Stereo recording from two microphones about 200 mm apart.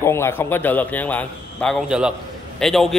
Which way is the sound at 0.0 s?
15° left (ahead or behind).